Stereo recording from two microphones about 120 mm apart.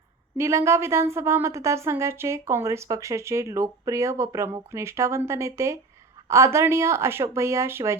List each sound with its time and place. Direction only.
0.3 s a woman's voice: 25° right (ahead or behind)